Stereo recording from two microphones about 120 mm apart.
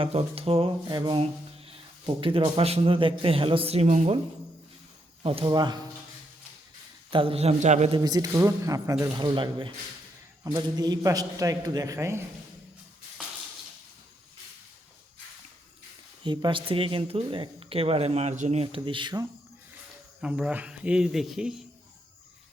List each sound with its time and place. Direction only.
0.0 s a man's voice: 55° right (ahead or behind)
0.9 s speech: 40° right (ahead or behind)
1.6 s speech: 50° right (ahead or behind); by 4.2 s 65° right (ahead or behind)
5.2 s speech: 50° right (ahead or behind)
5.5 s speech: 35° right (ahead or behind)
7.1 s a man's voice: 50° right (ahead or behind); by 7.9 s 75° right (ahead or behind)
7.9 s speech: 40° right (ahead or behind); by 12.2 s 20° right (ahead or behind)
16.2 s speech: 40° right (ahead or behind)
20.2 s speech: 10° right (ahead or behind)